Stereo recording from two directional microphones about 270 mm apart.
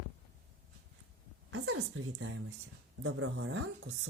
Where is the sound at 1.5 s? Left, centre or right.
Right.